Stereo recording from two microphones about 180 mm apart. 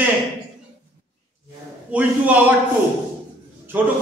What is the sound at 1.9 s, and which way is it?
Speech, 10° right (ahead or behind).